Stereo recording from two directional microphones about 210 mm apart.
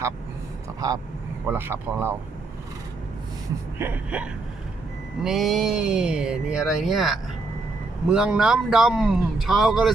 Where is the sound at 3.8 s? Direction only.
10° right (ahead or behind).